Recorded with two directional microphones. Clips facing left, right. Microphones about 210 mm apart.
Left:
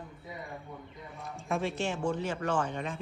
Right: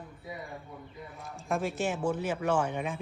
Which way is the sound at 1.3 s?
Centre (ahead or behind).